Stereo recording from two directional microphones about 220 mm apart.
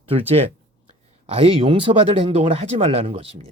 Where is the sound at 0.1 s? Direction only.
25° right (ahead or behind).